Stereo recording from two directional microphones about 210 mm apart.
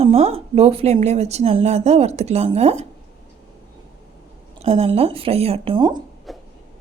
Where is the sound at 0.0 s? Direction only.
30° right (ahead or behind).